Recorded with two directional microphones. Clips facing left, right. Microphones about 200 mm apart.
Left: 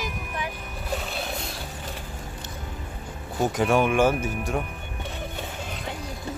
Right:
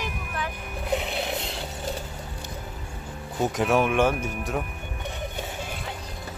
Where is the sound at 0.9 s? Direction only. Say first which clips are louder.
Right 4 dB; 20° right (ahead or behind).